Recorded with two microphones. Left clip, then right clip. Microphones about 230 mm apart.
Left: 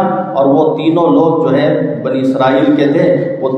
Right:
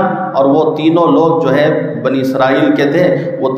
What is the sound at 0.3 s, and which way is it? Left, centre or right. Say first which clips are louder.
A man's voice: even; right.